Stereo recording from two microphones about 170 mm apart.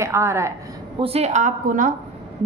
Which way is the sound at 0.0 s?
15° right (ahead or behind).